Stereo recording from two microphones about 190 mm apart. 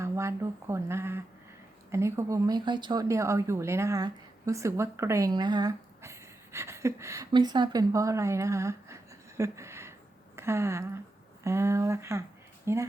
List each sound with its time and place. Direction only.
0.0 s speech: 15° right (ahead or behind)
9.4 s a sound: 15° right (ahead or behind)
10.3 s speech: 15° right (ahead or behind)